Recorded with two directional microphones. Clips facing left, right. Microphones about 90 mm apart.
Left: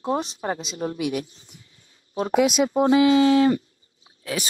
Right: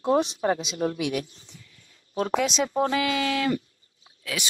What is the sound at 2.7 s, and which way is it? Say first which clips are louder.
Speech: left 10 dB; 20° left (ahead or behind).